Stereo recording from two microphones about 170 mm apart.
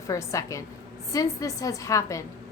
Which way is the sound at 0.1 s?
20° left (ahead or behind).